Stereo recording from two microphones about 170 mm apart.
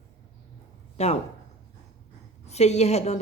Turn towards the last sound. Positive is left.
turn(degrees=40)  # may be behind; listen again after turning